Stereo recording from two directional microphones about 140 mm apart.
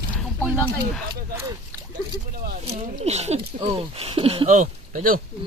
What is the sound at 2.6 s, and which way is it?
Speech, 45° right (ahead or behind).